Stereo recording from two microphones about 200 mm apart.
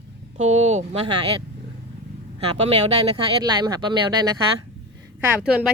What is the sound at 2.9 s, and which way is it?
Speech, 25° right (ahead or behind).